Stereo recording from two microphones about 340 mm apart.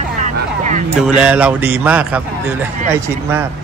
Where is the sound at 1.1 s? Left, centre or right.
Centre.